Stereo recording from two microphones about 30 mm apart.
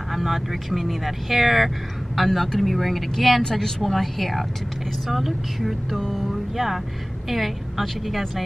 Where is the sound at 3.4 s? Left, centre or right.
Centre.